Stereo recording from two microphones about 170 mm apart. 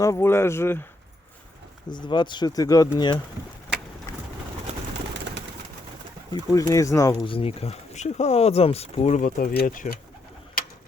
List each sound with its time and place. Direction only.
0.0 s speech: 15° left (ahead or behind)
1.9 s speech: 25° left (ahead or behind)
6.3 s speech: 20° left (ahead or behind); by 10.0 s 50° left (ahead or behind)